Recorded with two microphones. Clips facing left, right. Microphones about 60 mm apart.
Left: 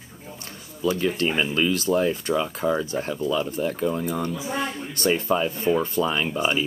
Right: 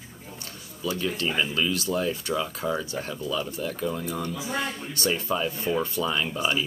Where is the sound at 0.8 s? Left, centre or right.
Left.